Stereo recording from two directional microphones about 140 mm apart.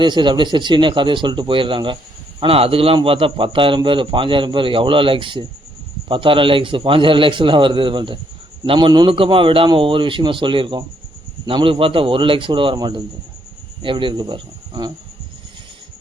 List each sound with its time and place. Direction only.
0.0 s speech: 35° right (ahead or behind)